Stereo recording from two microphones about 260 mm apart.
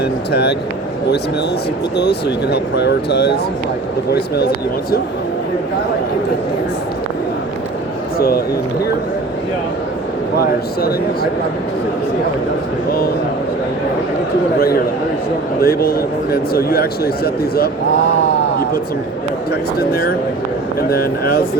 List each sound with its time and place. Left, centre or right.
0.3 s speech: left
2.0 s speech: left
10.4 s speech: left
15.6 s speech: left
19.8 s speech: left